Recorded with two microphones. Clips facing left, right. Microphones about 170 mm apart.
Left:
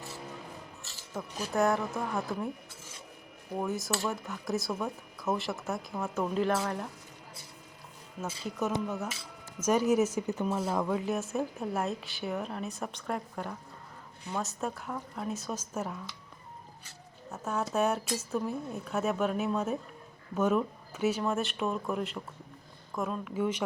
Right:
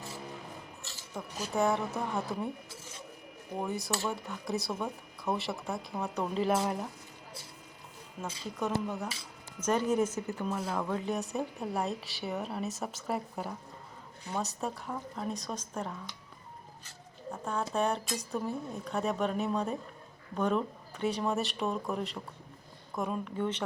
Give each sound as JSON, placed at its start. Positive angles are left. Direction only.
{"t": 1.1, "sound": "speech", "side_deg": 0}
{"t": 3.6, "sound": "speech", "side_deg": 0}
{"t": 6.5, "sound": "speech", "side_deg": -15}
{"t": 8.2, "sound": "speech", "side_deg": 5}
{"t": 10.8, "sound": "speech", "side_deg": 5}
{"t": 17.3, "sound": "speech", "side_deg": 5}